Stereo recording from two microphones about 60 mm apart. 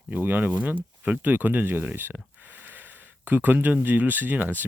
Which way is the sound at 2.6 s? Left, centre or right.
Right.